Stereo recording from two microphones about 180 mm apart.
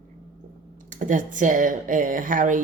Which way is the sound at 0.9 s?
45° right (ahead or behind).